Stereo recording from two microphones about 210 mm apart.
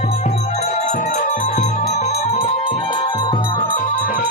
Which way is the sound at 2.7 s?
25° left (ahead or behind).